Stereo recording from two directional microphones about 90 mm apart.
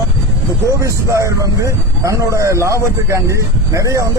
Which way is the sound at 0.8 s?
35° right (ahead or behind).